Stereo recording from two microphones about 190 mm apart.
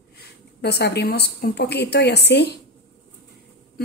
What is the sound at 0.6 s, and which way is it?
A woman's voice, 60° left (ahead or behind).